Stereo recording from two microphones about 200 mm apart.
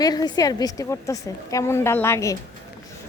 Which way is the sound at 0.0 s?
20° left (ahead or behind).